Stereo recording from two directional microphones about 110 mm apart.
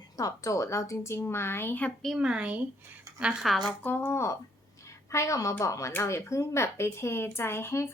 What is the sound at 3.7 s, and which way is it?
Speech, 15° left (ahead or behind).